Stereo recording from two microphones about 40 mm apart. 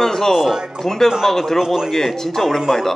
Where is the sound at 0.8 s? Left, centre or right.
Centre.